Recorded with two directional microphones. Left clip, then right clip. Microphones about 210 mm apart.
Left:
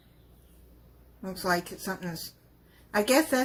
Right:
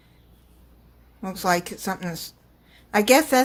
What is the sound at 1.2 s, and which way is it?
A woman's voice, 45° right (ahead or behind).